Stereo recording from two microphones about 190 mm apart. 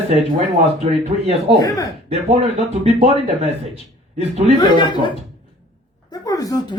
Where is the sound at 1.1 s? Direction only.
30° right (ahead or behind).